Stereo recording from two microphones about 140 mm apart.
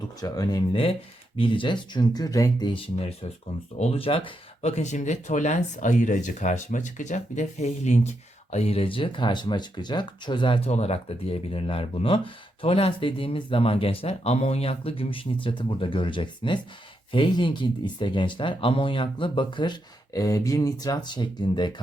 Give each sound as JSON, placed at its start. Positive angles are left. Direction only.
{"t": 0.2, "sound": "speech", "side_deg": 25}
{"t": 8.5, "sound": "speech", "side_deg": 45}
{"t": 10.7, "sound": "speech", "side_deg": 50}